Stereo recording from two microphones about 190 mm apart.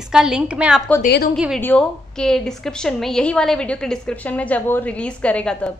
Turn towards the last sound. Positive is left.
turn(degrees=5)  # may be behind; listen again after turning